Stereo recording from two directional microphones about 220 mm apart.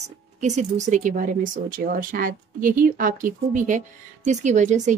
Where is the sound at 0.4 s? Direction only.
30° right (ahead or behind).